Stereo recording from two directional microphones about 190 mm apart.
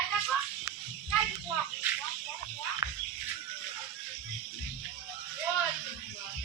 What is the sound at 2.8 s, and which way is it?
Music, 15° right (ahead or behind).